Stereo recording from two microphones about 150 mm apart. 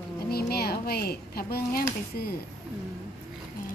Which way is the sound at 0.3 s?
90° left.